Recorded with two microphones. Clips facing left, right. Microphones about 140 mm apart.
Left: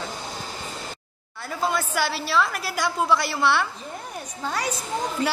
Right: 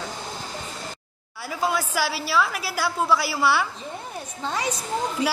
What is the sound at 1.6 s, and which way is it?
A child's voice, 10° right (ahead or behind).